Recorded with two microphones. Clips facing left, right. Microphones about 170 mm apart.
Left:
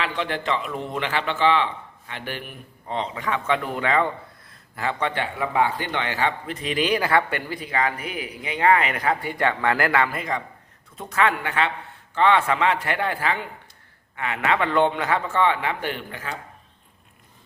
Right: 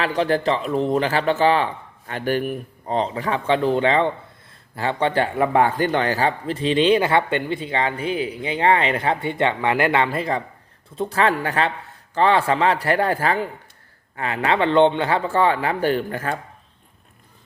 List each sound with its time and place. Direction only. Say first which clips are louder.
0.0 s a man's voice: right 7 dB; 40° right (ahead or behind)